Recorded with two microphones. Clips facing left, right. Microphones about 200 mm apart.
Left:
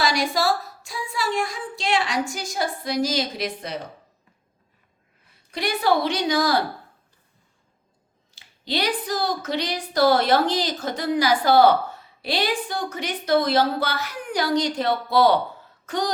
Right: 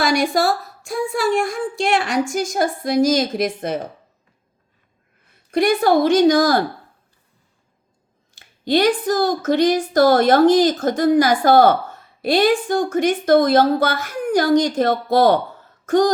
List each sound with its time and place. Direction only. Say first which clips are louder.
0.0 s a woman's voice: right 5 dB; 50° right (ahead or behind)
5.5 s a woman's voice: right 7 dB; 50° right (ahead or behind)
8.4 s a woman's voice: right 10 dB; 50° right (ahead or behind)